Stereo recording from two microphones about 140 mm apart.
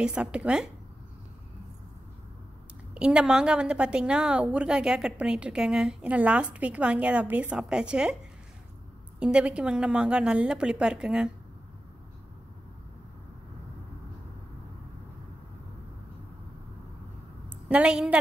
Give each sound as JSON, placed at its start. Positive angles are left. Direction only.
{"t": 0.0, "sound": "a woman's voice", "side_deg": -5}
{"t": 2.9, "sound": "a woman's voice", "side_deg": -5}
{"t": 9.2, "sound": "a woman's voice", "side_deg": -5}
{"t": 17.6, "sound": "a woman's voice", "side_deg": -10}